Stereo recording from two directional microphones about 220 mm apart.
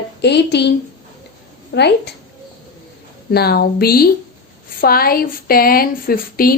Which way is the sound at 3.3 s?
45° left (ahead or behind).